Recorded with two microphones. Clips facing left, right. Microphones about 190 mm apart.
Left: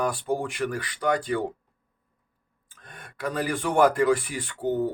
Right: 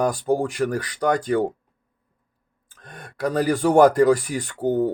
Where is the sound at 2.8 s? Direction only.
40° right (ahead or behind).